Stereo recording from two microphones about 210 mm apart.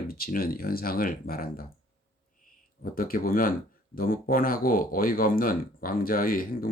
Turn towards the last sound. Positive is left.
turn(degrees=45)  # may be behind; listen again after turning